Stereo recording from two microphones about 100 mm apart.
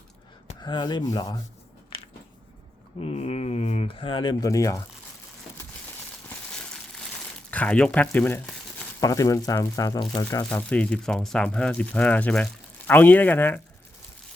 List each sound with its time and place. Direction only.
0.6 s speech: 50° left (ahead or behind)
3.0 s speech: 85° left; by 4.4 s 50° left (ahead or behind)
4.4 s speech: 35° left (ahead or behind)
7.5 s speech: 10° left (ahead or behind)
9.0 s speech: 35° left (ahead or behind)
10.4 s speech: 15° left (ahead or behind)